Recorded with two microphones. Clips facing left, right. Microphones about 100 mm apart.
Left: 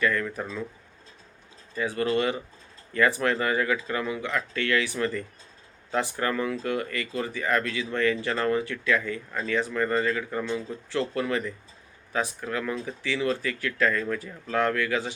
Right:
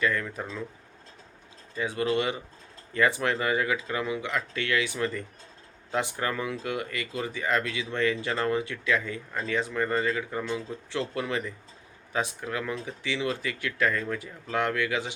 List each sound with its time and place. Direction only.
0.0 s speech: 15° right (ahead or behind)
1.7 s speech: 20° right (ahead or behind)